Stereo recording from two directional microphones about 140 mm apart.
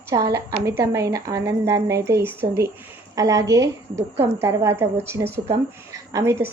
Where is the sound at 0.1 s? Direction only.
20° right (ahead or behind).